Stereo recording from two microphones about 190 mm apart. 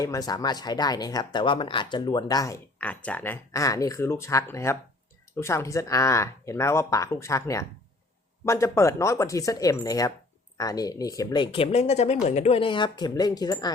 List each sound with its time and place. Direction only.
0.0 s speech: 20° left (ahead or behind)